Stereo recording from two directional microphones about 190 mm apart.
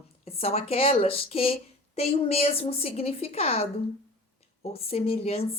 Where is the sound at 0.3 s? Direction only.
30° left (ahead or behind).